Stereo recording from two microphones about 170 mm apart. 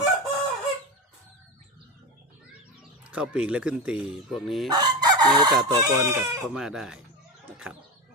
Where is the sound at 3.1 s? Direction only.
5° right (ahead or behind).